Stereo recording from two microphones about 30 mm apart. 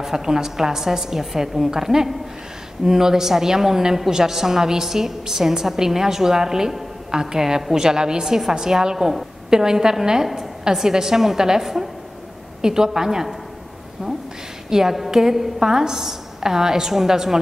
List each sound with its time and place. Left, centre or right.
0.0 s a woman's voice: centre
14.7 s a woman's voice: centre